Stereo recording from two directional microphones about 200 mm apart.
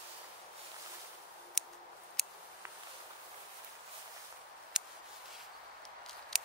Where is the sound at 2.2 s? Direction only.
Centre (ahead or behind).